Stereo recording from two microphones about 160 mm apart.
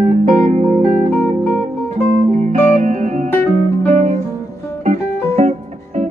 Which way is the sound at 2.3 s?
45° right (ahead or behind).